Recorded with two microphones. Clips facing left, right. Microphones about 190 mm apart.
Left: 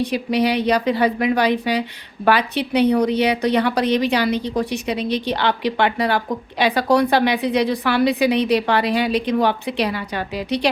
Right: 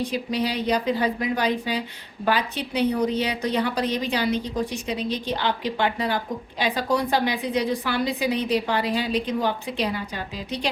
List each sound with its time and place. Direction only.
0.0 s a woman's voice: 70° left (ahead or behind)